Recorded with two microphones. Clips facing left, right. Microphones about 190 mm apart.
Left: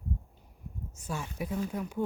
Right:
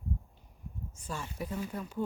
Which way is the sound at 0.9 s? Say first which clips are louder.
Left 3 dB; 10° left (ahead or behind).